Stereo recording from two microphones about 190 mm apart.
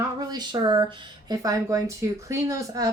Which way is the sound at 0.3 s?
20° right (ahead or behind).